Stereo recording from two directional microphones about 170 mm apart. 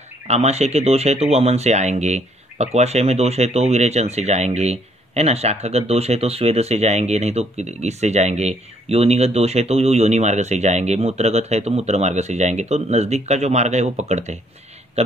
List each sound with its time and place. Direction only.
0.3 s speech: 40° right (ahead or behind)